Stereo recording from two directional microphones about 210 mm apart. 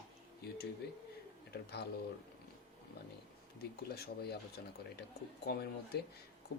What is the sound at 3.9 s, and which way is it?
Speech, 50° left (ahead or behind).